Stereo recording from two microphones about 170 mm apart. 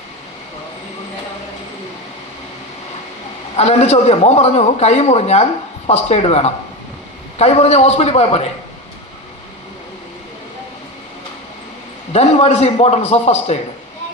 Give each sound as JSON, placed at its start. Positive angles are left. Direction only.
{"t": 3.5, "sound": "a man's voice", "side_deg": 40}
{"t": 12.1, "sound": "a man's voice", "side_deg": 40}